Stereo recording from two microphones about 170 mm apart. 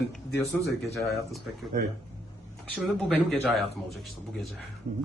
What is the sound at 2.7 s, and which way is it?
Speech, centre (ahead or behind).